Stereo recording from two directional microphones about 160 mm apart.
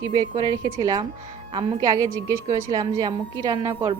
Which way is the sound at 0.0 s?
25° right (ahead or behind).